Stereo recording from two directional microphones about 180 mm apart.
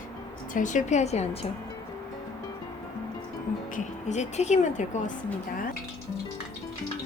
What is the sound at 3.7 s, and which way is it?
Speech, 40° left (ahead or behind).